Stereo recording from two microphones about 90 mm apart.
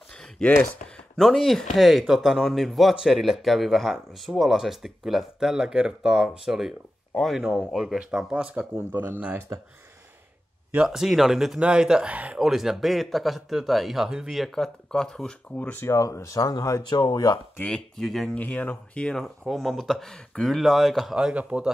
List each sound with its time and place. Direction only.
0.1 s speech: 15° left (ahead or behind); by 8.6 s 10° right (ahead or behind)
8.7 s speech: 25° right (ahead or behind)
10.9 s speech: 5° right (ahead or behind)
12.4 s speech: 5° right (ahead or behind)
15.5 s speech: 20° left (ahead or behind)
15.9 s speech: 35° left (ahead or behind)
17.6 s speech: 10° left (ahead or behind)
18.3 s speech: 15° left (ahead or behind); by 21.6 s 10° right (ahead or behind)